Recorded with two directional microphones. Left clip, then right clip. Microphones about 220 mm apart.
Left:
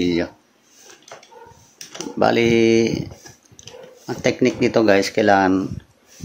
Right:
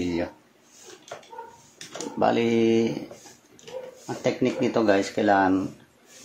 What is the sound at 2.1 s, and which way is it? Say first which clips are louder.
Speech: left 6 dB; 35° left (ahead or behind).